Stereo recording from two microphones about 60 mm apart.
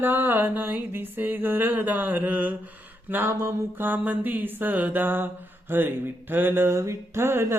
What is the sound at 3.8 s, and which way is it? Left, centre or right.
Speech, right.